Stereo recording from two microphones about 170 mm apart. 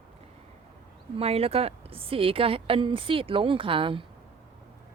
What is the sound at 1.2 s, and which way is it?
Speech, 35° right (ahead or behind).